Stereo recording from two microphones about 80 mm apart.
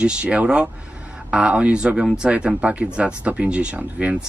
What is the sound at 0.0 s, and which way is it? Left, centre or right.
Speech, centre.